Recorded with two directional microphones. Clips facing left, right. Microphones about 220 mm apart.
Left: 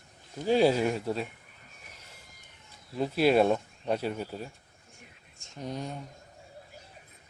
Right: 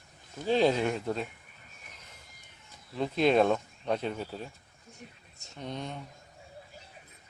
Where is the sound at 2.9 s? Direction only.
5° left (ahead or behind).